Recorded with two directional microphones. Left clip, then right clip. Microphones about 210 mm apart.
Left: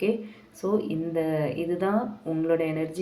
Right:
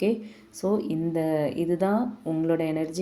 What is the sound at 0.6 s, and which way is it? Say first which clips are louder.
A woman's voice: right 1 dB; 45° right (ahead or behind).